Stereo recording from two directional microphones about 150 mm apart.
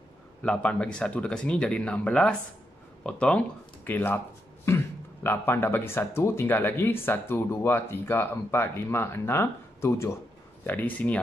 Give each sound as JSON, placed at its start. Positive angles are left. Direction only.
{"t": 0.4, "sound": "speech", "side_deg": 10}